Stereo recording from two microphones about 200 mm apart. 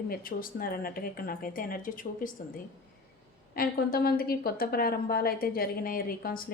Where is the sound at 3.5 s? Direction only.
45° left (ahead or behind).